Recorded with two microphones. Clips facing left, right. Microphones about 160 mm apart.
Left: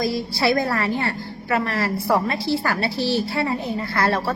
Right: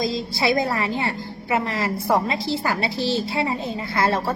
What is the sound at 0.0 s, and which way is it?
A woman's voice, 20° right (ahead or behind).